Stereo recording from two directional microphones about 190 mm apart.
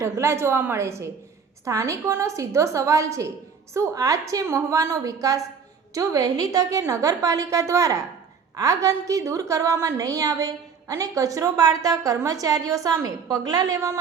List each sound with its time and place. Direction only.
0.0 s a woman's voice: 15° right (ahead or behind)